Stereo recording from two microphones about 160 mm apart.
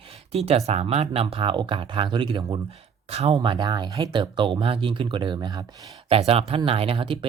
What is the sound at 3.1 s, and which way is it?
Speech, 40° right (ahead or behind).